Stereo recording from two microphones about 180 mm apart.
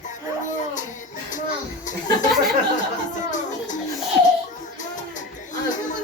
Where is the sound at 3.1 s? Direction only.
45° left (ahead or behind).